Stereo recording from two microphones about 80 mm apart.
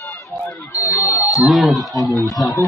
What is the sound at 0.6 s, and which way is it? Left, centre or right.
Speech, left.